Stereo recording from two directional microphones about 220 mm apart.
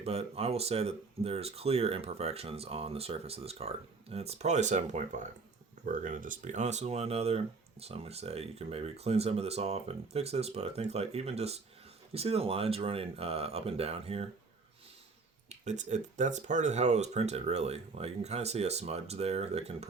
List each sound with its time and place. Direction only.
0.0 s speech: 25° right (ahead or behind)
15.4 s speech: 30° right (ahead or behind)